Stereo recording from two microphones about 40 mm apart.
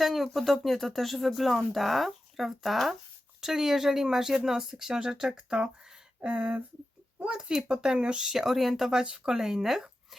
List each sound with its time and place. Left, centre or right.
0.0 s speech: centre
6.2 s a sound: right
7.3 s speech: right
8.3 s speech: centre